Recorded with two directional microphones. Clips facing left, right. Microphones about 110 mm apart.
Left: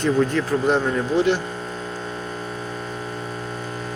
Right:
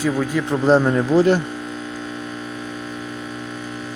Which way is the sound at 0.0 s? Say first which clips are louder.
Left 1 dB; 5° right (ahead or behind).